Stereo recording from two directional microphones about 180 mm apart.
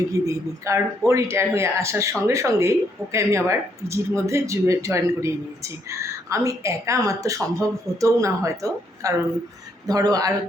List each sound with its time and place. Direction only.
0.1 s speech: 15° right (ahead or behind)